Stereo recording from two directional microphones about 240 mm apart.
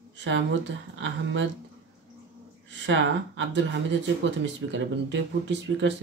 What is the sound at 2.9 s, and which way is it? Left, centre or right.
Speech, right.